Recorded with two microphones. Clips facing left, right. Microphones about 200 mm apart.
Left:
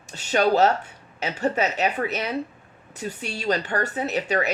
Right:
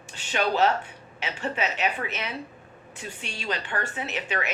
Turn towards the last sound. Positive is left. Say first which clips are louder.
# left 7 dB
turn(degrees=40)  # may be behind; listen again after turning